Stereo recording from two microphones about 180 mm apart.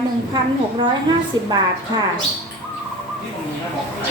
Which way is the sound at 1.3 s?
20° right (ahead or behind).